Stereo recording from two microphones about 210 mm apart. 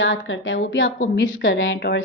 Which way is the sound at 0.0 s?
75° left (ahead or behind).